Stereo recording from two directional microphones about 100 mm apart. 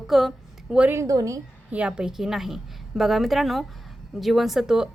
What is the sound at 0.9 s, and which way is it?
Speech, 30° right (ahead or behind).